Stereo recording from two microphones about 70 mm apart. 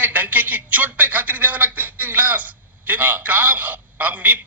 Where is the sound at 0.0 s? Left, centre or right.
Right.